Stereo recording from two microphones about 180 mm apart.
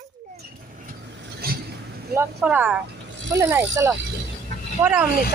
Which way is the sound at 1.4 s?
60° right (ahead or behind).